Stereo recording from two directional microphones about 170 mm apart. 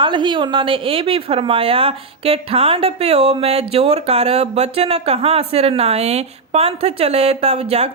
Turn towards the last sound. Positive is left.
turn(degrees=-40)  # may be behind; listen again after turning